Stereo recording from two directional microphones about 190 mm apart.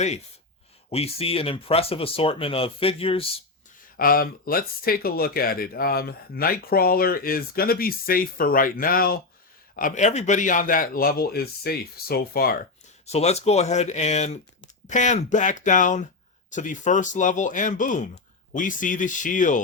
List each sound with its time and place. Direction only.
0.9 s speech: 30° left (ahead or behind)
3.9 s speech: 50° left (ahead or behind)
13.1 s speech: 35° left (ahead or behind)